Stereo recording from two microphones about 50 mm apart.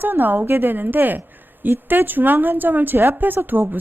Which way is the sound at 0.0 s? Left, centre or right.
Right.